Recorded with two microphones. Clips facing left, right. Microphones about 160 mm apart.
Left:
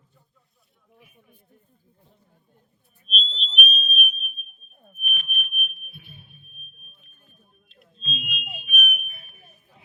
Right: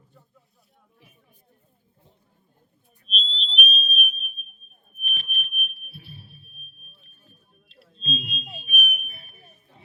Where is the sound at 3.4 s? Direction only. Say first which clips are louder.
Even; 35° right (ahead or behind).